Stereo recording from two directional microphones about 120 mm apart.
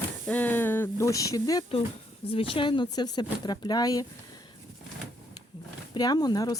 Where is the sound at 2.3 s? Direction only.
50° left (ahead or behind); by 4.1 s 30° left (ahead or behind).